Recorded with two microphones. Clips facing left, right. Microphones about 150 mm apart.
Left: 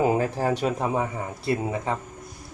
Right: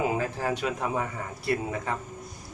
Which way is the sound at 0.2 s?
35° left (ahead or behind).